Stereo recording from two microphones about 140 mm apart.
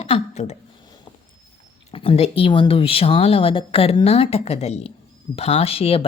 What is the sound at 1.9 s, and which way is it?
A woman's voice, 40° left (ahead or behind).